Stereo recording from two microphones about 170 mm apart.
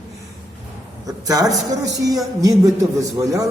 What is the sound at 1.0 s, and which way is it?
A man's voice, 20° right (ahead or behind).